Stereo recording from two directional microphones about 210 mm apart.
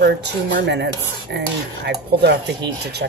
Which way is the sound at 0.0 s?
55° right (ahead or behind).